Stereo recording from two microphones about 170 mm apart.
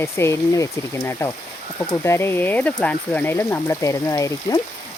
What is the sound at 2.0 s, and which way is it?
Speech, 15° left (ahead or behind).